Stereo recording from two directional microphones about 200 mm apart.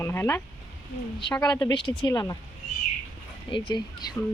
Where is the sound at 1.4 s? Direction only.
20° left (ahead or behind).